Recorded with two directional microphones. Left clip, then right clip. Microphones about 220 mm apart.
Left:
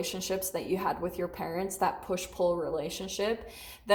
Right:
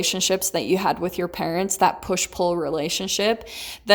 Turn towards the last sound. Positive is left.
turn(degrees=-50)  # may be behind; listen again after turning